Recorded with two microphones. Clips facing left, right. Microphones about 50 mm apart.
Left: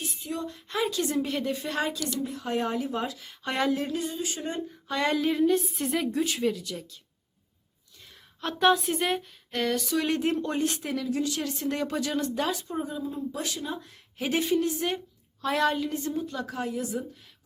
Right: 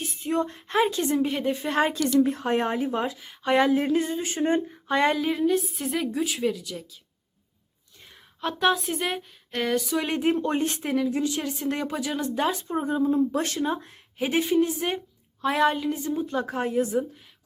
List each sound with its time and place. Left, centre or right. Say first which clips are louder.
0.0 s speech: right 7 dB; right
2.3 s a sound: right 4 dB; right
3.2 s speech: right 7 dB; centre
3.8 s a sound: right 6 dB; right
5.1 s speech: even; centre
8.4 s speech: left 1 dB; centre
10.3 s speech: right 2 dB; right; by 12.4 s centre
12.4 s speech: right 3 dB; right
12.9 s speech: right 10 dB; right
13.9 s a woman's voice: right 3 dB; right
16.2 s a sound: right 5 dB; right